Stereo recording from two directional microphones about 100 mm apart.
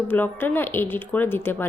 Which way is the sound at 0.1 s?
20° left (ahead or behind).